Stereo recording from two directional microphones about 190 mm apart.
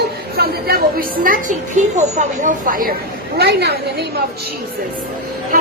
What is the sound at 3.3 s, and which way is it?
Speech, 60° right (ahead or behind).